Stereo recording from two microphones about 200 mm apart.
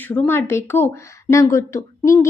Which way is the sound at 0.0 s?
10° left (ahead or behind).